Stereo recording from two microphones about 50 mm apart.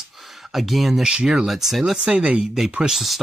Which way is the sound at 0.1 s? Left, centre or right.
Centre.